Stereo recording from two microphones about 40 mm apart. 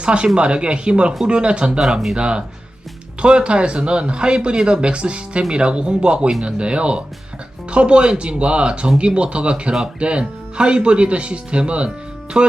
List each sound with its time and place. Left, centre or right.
0.0 s speech: right
1.8 s speech: centre
2.1 s speech: right